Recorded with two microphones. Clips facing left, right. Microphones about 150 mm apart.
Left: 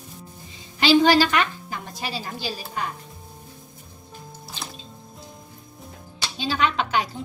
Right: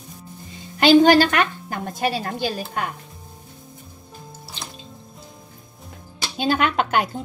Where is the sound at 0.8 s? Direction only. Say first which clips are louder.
Right 4 dB; 50° right (ahead or behind).